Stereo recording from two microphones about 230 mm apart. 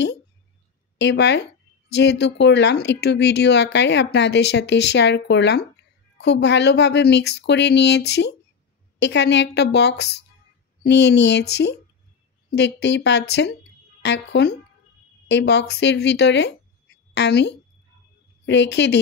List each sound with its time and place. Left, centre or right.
0.9 s a woman's voice: left